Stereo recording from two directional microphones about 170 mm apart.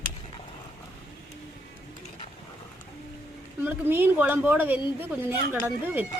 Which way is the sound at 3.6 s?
10° right (ahead or behind).